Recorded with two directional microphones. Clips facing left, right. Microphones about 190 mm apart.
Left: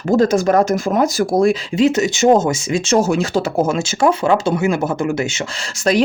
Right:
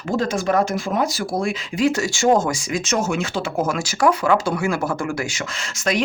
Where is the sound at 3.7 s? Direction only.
25° left (ahead or behind).